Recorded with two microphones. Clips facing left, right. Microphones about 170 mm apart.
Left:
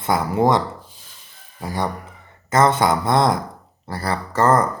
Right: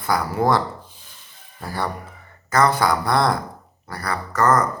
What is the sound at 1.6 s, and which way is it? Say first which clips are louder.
Speech: left 2 dB; 15° left (ahead or behind).